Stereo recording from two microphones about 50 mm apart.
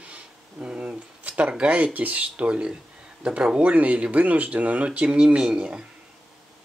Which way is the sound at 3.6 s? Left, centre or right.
Right.